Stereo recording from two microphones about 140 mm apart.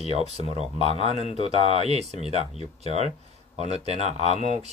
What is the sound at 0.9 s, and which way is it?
Speech, 45° left (ahead or behind).